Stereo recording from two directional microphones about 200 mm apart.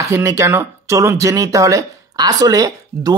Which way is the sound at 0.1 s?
15° right (ahead or behind).